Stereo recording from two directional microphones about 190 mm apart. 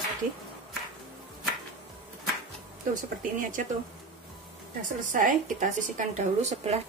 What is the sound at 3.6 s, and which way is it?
Speech, 40° right (ahead or behind).